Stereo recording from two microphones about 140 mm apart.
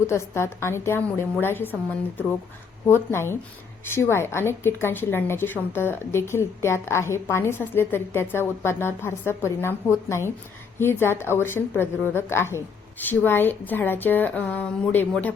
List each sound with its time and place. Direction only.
0.1 s a woman's voice: 20° left (ahead or behind)